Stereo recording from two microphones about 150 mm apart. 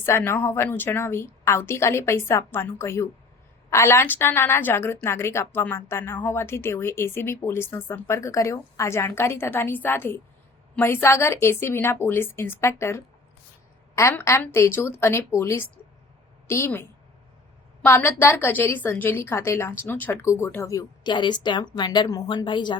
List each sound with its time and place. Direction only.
0.0 s a woman's voice: 15° left (ahead or behind)
17.8 s a woman's voice: 15° left (ahead or behind); by 22.8 s 30° left (ahead or behind)